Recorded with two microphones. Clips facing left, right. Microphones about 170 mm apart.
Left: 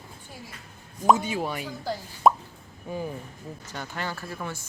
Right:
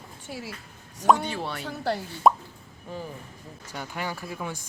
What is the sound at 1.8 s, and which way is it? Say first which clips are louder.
Speech: right 9 dB; 70° right (ahead or behind).